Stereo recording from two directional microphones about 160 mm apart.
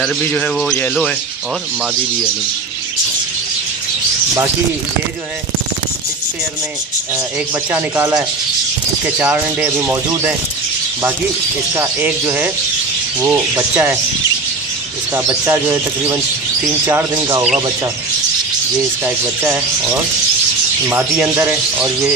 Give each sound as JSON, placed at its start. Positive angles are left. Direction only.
{"t": 0.2, "sound": "speech", "side_deg": 5}
{"t": 7.7, "sound": "speech", "side_deg": -15}
{"t": 11.7, "sound": "speech", "side_deg": -15}
{"t": 15.1, "sound": "speech", "side_deg": -15}
{"t": 19.0, "sound": "speech", "side_deg": -15}